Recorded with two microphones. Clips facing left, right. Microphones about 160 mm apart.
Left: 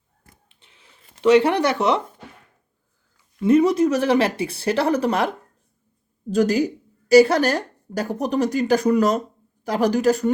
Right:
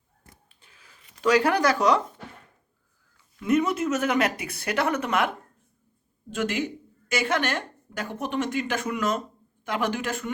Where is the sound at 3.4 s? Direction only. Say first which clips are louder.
Left 7 dB; 35° left (ahead or behind).